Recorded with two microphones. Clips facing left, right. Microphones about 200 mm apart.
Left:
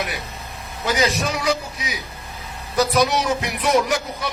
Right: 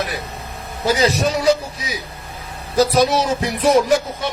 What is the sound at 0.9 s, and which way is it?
A man's voice, 35° right (ahead or behind).